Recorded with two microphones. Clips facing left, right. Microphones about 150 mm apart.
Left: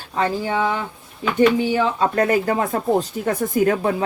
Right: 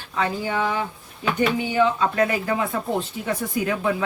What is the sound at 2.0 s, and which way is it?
Speech, 45° left (ahead or behind).